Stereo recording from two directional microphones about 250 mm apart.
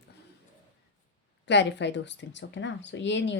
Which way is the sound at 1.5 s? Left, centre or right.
Left.